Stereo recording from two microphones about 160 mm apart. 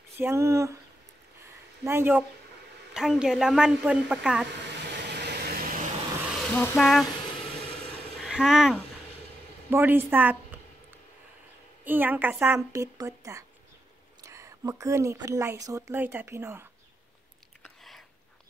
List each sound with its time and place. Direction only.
0.2 s a woman's voice: 15° right (ahead or behind)
1.9 s a woman's voice: 15° right (ahead or behind)
4.5 s vehicle: 90° right; by 5.9 s 60° right (ahead or behind)
6.5 s speech: 10° left (ahead or behind)
6.8 s speech: centre (ahead or behind)
8.2 s a woman's voice: 5° right (ahead or behind)
11.8 s a woman's voice: 10° right (ahead or behind)